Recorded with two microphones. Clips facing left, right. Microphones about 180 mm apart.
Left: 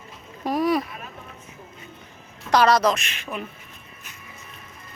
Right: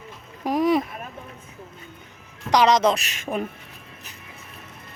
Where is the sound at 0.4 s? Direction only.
20° right (ahead or behind).